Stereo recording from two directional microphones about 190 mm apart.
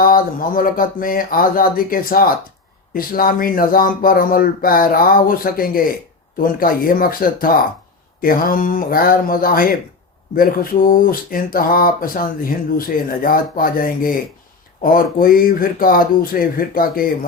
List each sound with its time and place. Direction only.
0.0 s speech: 50° left (ahead or behind)